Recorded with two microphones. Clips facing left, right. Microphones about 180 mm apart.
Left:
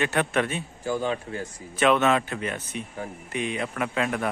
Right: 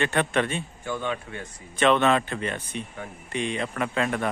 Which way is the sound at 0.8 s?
35° left (ahead or behind).